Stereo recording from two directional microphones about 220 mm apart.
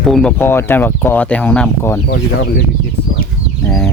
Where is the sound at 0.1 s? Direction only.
5° left (ahead or behind).